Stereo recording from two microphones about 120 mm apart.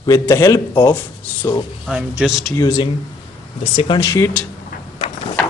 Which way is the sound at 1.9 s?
5° right (ahead or behind).